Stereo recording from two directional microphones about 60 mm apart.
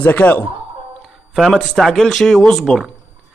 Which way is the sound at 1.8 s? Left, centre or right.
Centre.